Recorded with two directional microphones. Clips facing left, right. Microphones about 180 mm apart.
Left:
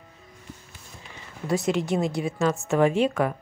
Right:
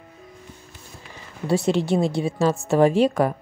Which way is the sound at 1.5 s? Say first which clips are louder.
Right 4 dB; 30° right (ahead or behind).